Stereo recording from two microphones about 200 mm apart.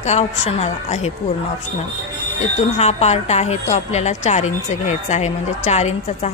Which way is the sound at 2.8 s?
30° left (ahead or behind).